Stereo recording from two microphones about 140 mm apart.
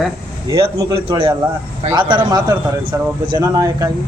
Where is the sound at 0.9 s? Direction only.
40° right (ahead or behind).